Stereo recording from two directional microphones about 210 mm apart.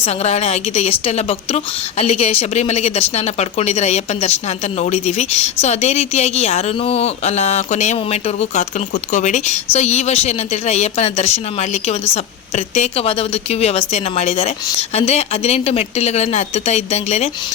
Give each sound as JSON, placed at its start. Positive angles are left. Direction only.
{"t": 0.0, "sound": "a woman's voice", "side_deg": 30}